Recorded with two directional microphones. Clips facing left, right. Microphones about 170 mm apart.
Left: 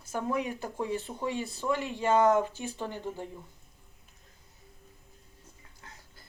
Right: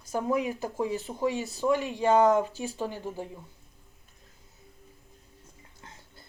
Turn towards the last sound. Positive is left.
turn(degrees=-25)  # may be behind; listen again after turning